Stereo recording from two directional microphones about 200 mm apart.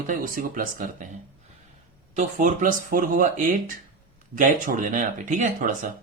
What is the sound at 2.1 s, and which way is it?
Speech, 40° right (ahead or behind).